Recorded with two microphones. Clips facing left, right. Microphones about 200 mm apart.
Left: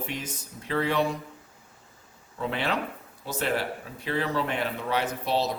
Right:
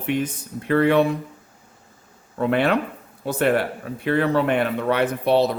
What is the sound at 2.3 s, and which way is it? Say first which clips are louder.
Speech: right 9 dB; 60° right (ahead or behind).